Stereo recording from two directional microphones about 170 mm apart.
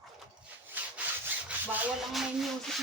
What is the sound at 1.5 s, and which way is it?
Rub, 5° right (ahead or behind).